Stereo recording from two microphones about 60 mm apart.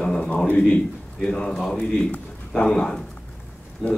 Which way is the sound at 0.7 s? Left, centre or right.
Centre.